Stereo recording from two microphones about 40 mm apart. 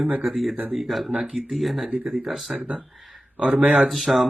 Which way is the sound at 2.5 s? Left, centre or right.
Right.